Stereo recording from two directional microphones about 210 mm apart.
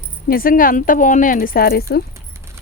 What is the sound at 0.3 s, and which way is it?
Speech, 45° left (ahead or behind).